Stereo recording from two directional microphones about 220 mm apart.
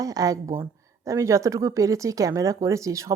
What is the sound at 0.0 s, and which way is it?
Speech, 15° right (ahead or behind).